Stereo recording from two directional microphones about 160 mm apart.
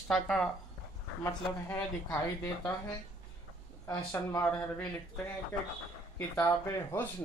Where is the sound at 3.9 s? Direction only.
15° left (ahead or behind).